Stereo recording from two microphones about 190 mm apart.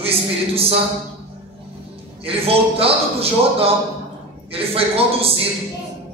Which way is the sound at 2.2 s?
30° right (ahead or behind).